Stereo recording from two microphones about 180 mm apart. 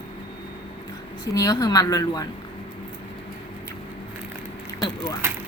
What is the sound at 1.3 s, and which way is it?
Speech, 20° left (ahead or behind).